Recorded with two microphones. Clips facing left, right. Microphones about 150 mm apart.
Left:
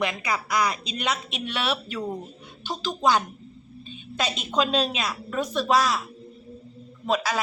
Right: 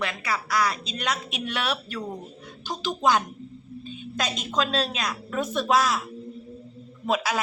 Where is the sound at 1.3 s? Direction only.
5° right (ahead or behind).